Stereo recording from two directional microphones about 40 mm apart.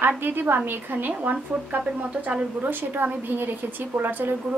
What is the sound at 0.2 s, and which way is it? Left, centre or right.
Speech, right.